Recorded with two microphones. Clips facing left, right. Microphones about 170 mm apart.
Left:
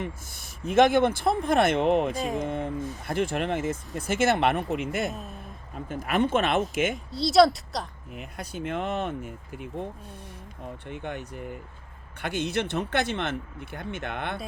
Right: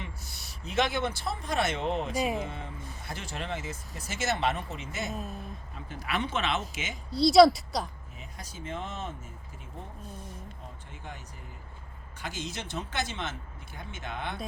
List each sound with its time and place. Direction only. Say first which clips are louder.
0.0 s speech: left 8 dB; 50° left (ahead or behind)
2.1 s speech: even; 5° right (ahead or behind)
2.4 s speech: left 9 dB; 55° left (ahead or behind)
6.9 s a woman's voice: right 2 dB; centre (ahead or behind)
8.1 s speech: left 9 dB; 65° left (ahead or behind)
10.8 s speech: left 12 dB; 65° left (ahead or behind)